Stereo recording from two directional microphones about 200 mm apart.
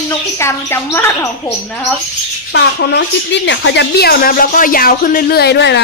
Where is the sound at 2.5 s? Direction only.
55° left (ahead or behind).